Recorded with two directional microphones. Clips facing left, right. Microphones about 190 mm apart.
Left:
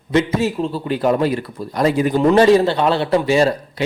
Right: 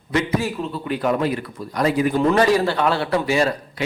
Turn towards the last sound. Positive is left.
turn(degrees=30)  # may be behind; listen again after turning